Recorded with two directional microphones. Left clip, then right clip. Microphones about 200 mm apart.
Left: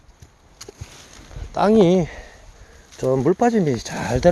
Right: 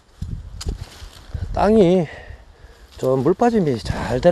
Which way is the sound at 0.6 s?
30° right (ahead or behind).